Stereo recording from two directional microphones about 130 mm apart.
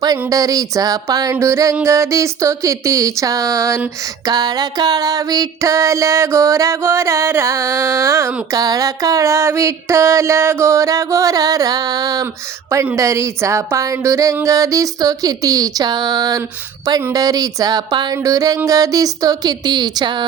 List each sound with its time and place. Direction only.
0.0 s music: 30° right (ahead or behind)